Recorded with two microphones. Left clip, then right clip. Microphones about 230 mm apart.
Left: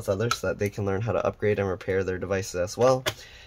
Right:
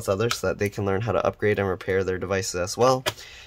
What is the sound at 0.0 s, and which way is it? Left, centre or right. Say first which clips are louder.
Speech: right 2 dB; right.